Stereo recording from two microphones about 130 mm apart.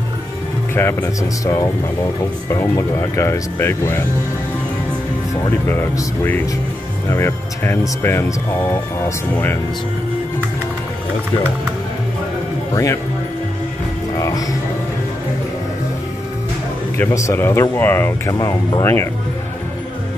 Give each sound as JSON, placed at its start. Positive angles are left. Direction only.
{"t": 0.7, "sound": "speech", "side_deg": 20}
{"t": 5.7, "sound": "speech", "side_deg": 15}
{"t": 12.7, "sound": "speech", "side_deg": 25}
{"t": 17.0, "sound": "speech", "side_deg": 20}